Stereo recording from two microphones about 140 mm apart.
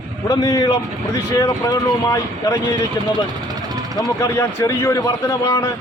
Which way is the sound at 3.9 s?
25° left (ahead or behind).